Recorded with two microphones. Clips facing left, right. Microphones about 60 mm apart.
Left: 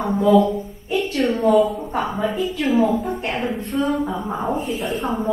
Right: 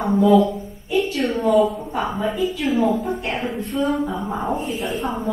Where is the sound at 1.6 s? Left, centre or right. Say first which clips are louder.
Even; centre.